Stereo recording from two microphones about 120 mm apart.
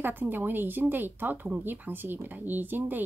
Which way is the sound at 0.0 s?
15° right (ahead or behind).